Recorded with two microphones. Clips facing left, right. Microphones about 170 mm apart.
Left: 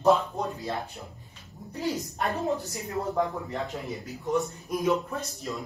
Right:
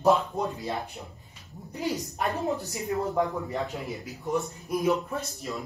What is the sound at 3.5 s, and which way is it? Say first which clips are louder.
A woman's voice: right 1 dB; centre (ahead or behind).